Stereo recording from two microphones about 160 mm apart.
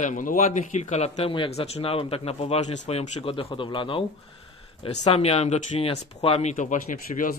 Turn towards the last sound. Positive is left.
turn(degrees=60)  # may be behind; listen again after turning